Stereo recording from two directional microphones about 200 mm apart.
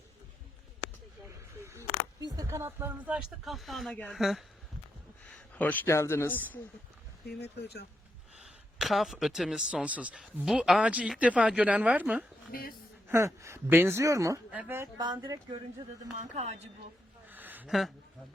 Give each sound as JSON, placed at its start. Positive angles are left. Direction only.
{"t": 2.2, "sound": "speech", "side_deg": -20}
{"t": 7.3, "sound": "speech", "side_deg": 60}
{"t": 8.4, "sound": "speech", "side_deg": 0}
{"t": 12.5, "sound": "speech", "side_deg": 45}
{"t": 13.1, "sound": "speech", "side_deg": -15}
{"t": 16.3, "sound": "speech", "side_deg": -35}
{"t": 17.2, "sound": "a sound", "side_deg": -10}